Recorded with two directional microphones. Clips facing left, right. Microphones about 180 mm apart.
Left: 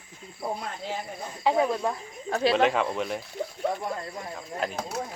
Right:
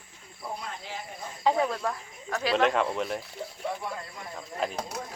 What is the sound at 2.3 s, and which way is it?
Speech, 35° left (ahead or behind).